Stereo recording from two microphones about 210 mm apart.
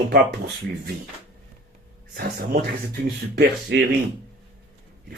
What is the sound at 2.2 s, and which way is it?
Speech, 45° right (ahead or behind).